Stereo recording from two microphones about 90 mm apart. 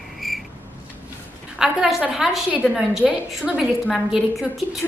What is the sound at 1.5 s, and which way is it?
A woman's voice, 5° right (ahead or behind).